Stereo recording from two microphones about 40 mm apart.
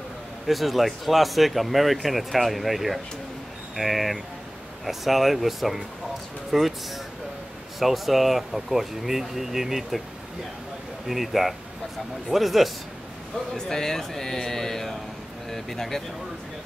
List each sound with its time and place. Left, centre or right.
0.5 s speech: centre
7.8 s speech: centre
11.1 s speech: centre
13.6 s speech: centre